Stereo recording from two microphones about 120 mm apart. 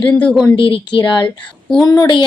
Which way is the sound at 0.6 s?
45° left (ahead or behind).